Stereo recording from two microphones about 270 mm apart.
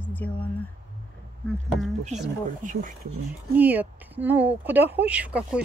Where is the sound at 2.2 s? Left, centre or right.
Right.